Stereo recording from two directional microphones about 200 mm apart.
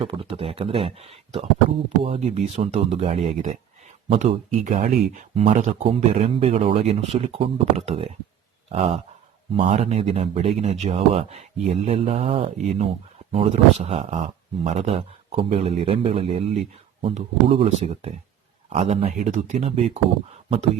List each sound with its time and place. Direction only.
0.0 s speech: 25° right (ahead or behind)